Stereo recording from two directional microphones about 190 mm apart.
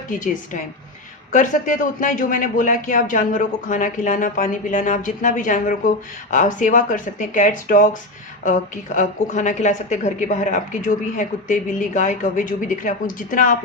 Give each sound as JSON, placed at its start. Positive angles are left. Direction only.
{"t": 0.1, "sound": "speech", "side_deg": 45}
{"t": 1.3, "sound": "speech", "side_deg": 40}
{"t": 9.0, "sound": "a woman's voice", "side_deg": 40}